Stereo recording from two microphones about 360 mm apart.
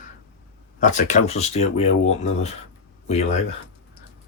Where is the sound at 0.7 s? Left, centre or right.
Centre.